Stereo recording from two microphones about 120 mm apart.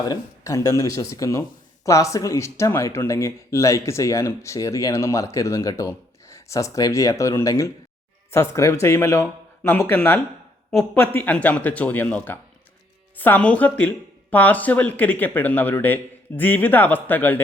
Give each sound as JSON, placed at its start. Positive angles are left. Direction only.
{"t": 0.0, "sound": "speech", "side_deg": 30}